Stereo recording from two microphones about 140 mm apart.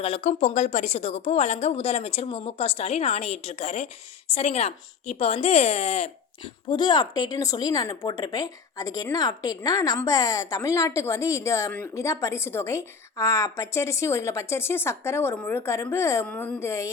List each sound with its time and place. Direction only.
0.0 s speech: 50° left (ahead or behind)
6.7 s a woman's voice: 30° left (ahead or behind)
16.2 s a woman's voice: 10° left (ahead or behind)